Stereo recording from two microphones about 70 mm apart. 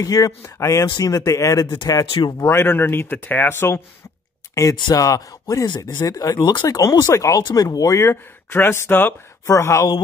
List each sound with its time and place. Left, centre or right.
0.0 s speech: left
0.9 s speech: left
2.3 s speech: left
4.8 s speech: left
6.6 s speech: left
8.1 s speech: left
9.5 s speech: left